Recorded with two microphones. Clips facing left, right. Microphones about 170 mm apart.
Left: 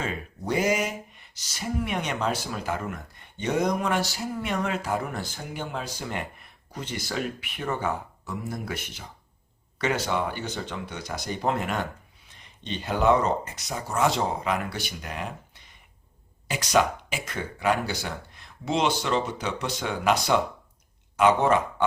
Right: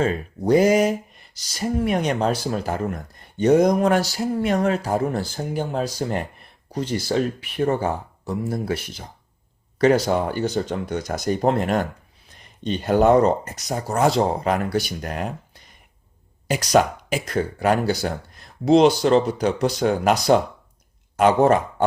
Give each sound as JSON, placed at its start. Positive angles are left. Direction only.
{"t": 0.0, "sound": "speech", "side_deg": -40}
{"t": 16.5, "sound": "speech", "side_deg": -40}